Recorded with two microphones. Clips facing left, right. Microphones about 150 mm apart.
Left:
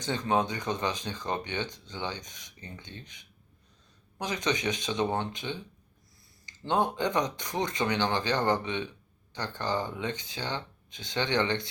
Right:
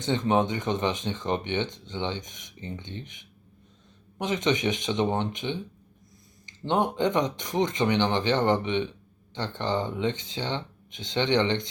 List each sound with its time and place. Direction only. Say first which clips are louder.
0.0 s speech: right 4 dB; 20° right (ahead or behind)